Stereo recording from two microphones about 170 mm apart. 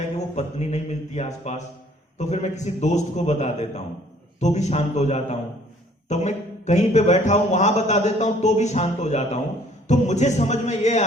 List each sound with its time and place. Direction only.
0.3 s a man's voice: 40° left (ahead or behind)